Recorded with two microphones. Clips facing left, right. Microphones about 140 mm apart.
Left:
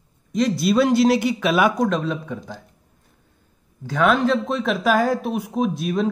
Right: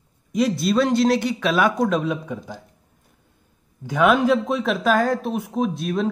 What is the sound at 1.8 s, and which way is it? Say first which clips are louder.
Speech: even; 5° right (ahead or behind).